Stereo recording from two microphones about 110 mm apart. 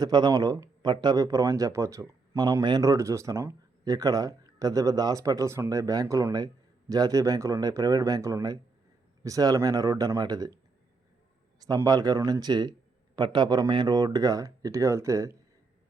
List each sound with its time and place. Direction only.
0.0 s speech: 40° right (ahead or behind)
11.6 s speech: 35° right (ahead or behind)